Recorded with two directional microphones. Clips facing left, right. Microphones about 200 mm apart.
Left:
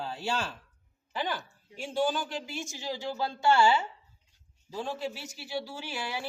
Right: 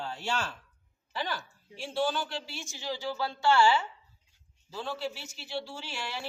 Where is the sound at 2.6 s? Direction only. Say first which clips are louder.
Left 5 dB; 40° left (ahead or behind).